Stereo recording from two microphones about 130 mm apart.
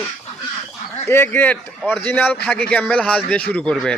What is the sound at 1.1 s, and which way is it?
A man's voice, 15° left (ahead or behind).